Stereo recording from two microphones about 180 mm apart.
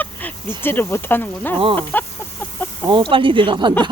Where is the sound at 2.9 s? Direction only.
25° right (ahead or behind).